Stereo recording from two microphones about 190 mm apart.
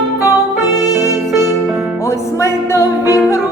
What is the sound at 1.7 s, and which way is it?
Music, 5° right (ahead or behind).